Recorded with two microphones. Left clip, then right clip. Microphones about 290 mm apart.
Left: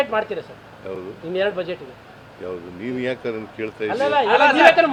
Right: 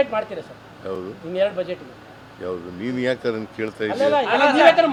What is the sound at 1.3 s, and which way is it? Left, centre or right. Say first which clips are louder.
Speech: right 1 dB; left.